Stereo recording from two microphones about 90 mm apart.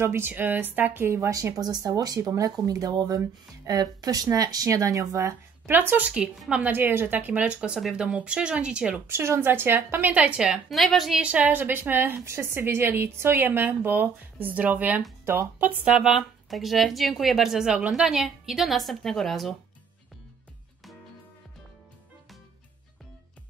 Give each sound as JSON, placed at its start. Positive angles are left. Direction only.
{"t": 0.0, "sound": "a woman's voice", "side_deg": -25}
{"t": 5.7, "sound": "speech", "side_deg": -20}
{"t": 9.0, "sound": "a woman's voice", "side_deg": -25}
{"t": 11.2, "sound": "a woman's voice", "side_deg": -15}
{"t": 15.9, "sound": "speech", "side_deg": -5}